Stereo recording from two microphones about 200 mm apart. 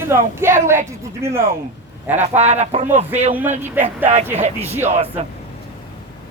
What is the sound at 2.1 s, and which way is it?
Speech, 35° right (ahead or behind).